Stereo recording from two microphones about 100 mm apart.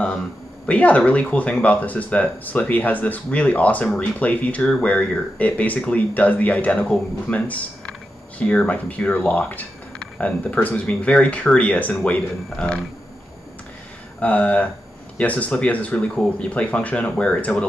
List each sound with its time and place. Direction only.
0.7 s speech: 15° left (ahead or behind)
14.2 s speech: 15° left (ahead or behind)